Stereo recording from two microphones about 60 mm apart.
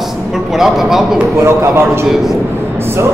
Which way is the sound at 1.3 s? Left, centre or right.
Right.